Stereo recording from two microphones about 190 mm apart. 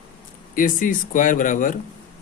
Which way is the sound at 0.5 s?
45° left (ahead or behind).